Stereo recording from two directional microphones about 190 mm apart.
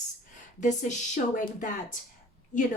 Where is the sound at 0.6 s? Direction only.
40° left (ahead or behind).